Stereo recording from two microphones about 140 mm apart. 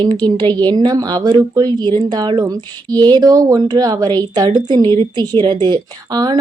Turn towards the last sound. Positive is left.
turn(degrees=-30)  # may be behind; listen again after turning